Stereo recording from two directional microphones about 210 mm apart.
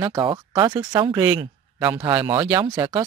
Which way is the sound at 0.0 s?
20° right (ahead or behind).